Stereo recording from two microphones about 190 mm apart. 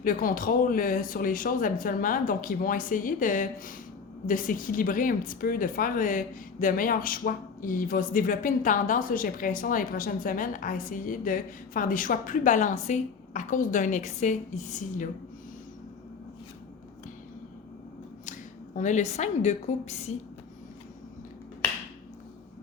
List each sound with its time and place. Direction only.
0.0 s speech: 45° left (ahead or behind)
18.3 s speech: 40° left (ahead or behind)